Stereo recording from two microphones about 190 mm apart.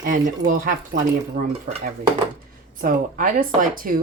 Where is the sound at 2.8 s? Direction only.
45° right (ahead or behind).